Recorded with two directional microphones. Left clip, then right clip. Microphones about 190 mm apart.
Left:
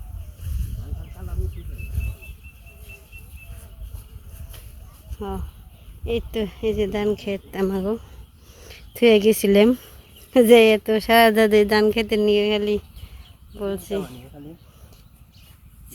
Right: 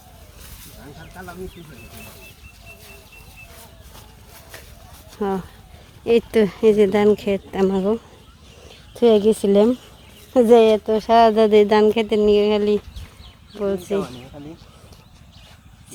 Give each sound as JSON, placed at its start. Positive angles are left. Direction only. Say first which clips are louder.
{"t": 5.2, "sound": "speech", "louder": "right 8 dB", "side_deg": -20}
{"t": 8.9, "sound": "a woman's voice", "louder": "right 1 dB", "side_deg": 15}